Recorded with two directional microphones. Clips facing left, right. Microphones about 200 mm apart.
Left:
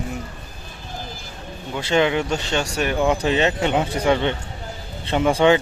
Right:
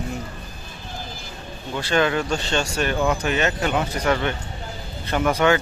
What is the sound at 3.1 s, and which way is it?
Speech, 30° left (ahead or behind).